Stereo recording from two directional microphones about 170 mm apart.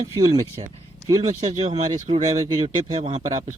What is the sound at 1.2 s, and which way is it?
Speech, 40° right (ahead or behind).